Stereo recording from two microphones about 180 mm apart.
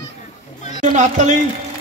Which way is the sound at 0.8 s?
45° right (ahead or behind).